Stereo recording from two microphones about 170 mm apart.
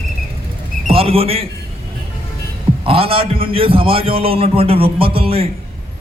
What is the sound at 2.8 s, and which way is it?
A man's voice, 35° right (ahead or behind).